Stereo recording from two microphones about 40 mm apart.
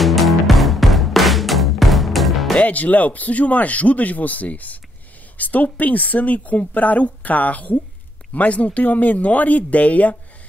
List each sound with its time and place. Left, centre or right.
0.0 s music: centre
2.6 s speech: left